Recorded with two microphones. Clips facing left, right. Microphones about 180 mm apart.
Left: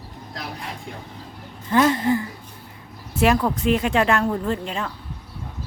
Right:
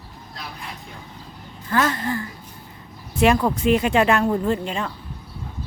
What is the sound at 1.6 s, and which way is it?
Speech, 15° left (ahead or behind).